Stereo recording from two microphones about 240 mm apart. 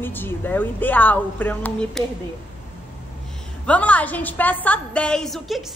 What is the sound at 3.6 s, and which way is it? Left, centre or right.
A woman's voice, centre.